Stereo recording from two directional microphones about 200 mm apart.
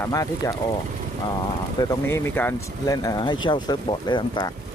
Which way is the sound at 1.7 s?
10° left (ahead or behind).